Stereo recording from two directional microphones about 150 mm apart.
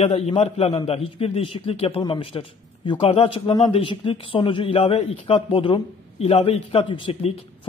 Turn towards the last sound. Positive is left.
turn(degrees=35)  # may be behind; listen again after turning